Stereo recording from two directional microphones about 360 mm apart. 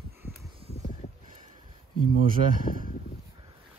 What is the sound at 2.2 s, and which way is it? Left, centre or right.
Speech, right.